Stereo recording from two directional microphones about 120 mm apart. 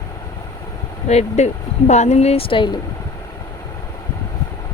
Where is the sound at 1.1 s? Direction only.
65° left (ahead or behind); by 2.7 s 45° left (ahead or behind).